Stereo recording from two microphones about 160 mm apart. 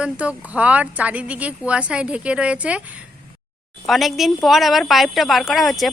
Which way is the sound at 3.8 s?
Centre (ahead or behind).